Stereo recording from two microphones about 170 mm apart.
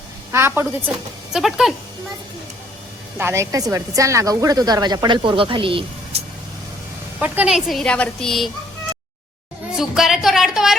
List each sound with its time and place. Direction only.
0.3 s a woman's voice: 15° right (ahead or behind)
3.2 s speech: 15° right (ahead or behind); by 6.2 s 30° right (ahead or behind)
7.2 s a woman's voice: 5° right (ahead or behind)
9.7 s a sound: centre (ahead or behind)